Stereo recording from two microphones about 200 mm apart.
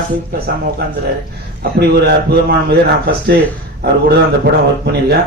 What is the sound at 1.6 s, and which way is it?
A man's voice, 55° right (ahead or behind).